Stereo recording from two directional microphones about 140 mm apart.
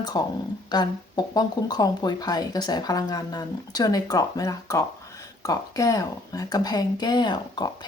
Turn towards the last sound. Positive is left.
turn(degrees=30)  # may be behind; listen again after turning